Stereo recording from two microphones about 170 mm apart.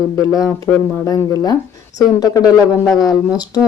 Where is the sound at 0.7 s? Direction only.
5° left (ahead or behind).